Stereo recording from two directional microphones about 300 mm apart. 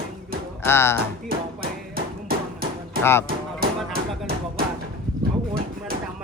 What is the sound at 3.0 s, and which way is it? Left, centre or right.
Speech, centre.